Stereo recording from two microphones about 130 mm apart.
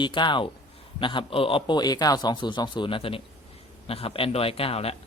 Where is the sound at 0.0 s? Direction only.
35° left (ahead or behind).